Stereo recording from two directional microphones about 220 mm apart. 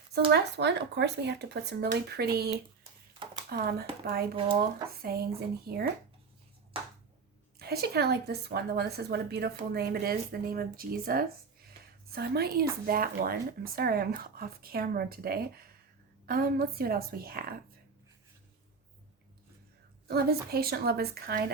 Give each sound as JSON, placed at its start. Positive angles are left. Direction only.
{"t": 0.3, "sound": "a woman's voice", "side_deg": -50}
{"t": 7.6, "sound": "a woman's voice", "side_deg": -45}
{"t": 20.1, "sound": "a woman's voice", "side_deg": -45}